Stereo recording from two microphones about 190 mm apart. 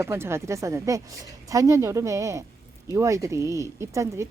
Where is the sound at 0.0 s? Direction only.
15° right (ahead or behind).